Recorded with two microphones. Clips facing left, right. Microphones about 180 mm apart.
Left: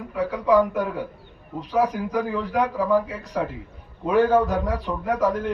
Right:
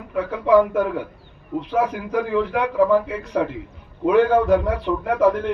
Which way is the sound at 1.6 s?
40° left (ahead or behind).